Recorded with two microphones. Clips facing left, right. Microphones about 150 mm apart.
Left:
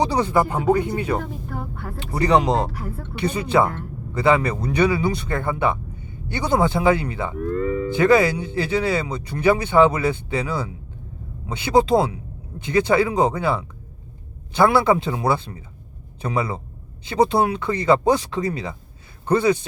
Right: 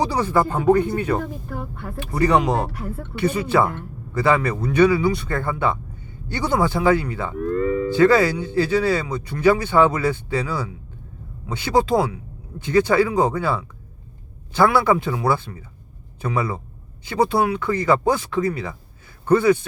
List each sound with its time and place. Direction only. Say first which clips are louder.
0.0 s speech: left 1 dB; 20° left (ahead or behind)
7.5 s a sound: right 3 dB; 70° right (ahead or behind)
7.9 s speech: even; 20° left (ahead or behind)